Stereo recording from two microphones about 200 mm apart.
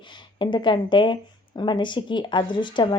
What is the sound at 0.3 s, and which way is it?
Speech, 25° left (ahead or behind).